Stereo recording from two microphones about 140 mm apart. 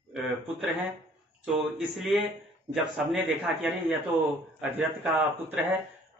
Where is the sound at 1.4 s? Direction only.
Centre (ahead or behind).